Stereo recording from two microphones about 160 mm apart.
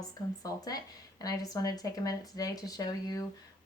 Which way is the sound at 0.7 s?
20° left (ahead or behind).